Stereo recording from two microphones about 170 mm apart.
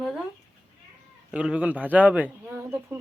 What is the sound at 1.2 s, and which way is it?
Speech, 5° right (ahead or behind).